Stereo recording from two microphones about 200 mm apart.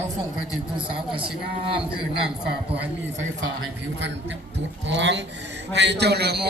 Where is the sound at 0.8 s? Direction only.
25° right (ahead or behind).